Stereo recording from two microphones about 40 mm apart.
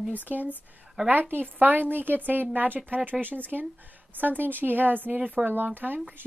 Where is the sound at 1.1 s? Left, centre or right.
Right.